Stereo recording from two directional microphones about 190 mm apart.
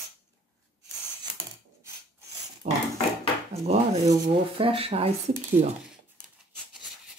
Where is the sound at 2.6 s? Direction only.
40° right (ahead or behind).